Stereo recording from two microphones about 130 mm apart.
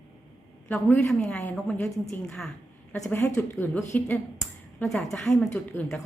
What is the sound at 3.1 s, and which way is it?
A woman's voice, 15° left (ahead or behind).